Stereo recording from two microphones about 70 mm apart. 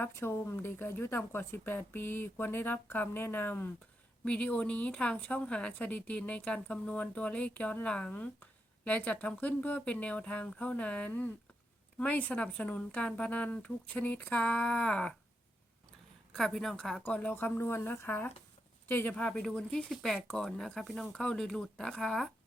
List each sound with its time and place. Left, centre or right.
0.0 s speech: left; by 15.1 s centre
16.3 s a woman's voice: centre
17.1 s speech: centre
17.5 s speech: left
19.1 s speech: centre
20.1 s speech: centre
20.4 s speech: centre